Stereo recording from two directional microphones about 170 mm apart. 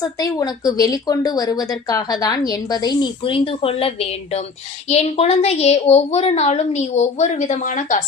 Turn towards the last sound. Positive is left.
turn(degrees=50)  # may be behind; listen again after turning